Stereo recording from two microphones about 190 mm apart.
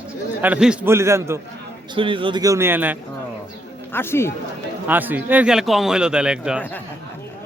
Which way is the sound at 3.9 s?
10° left (ahead or behind).